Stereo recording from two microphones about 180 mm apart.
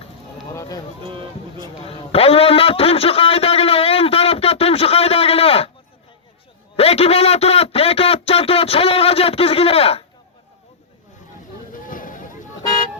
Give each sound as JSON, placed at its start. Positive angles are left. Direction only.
{"t": 0.5, "sound": "run", "side_deg": 20}
{"t": 1.0, "sound": "speech", "side_deg": -30}
{"t": 1.8, "sound": "a sound", "side_deg": 35}
{"t": 6.7, "sound": "a man's voice", "side_deg": 35}
{"t": 11.7, "sound": "boat", "side_deg": 50}